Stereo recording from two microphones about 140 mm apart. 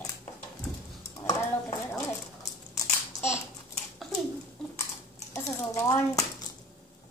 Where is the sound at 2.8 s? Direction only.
20° left (ahead or behind).